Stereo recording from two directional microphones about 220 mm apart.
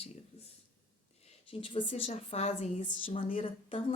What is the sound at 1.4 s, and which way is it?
Speech, 25° left (ahead or behind).